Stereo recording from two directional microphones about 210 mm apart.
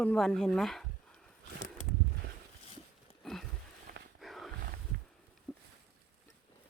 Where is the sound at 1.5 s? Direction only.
35° left (ahead or behind).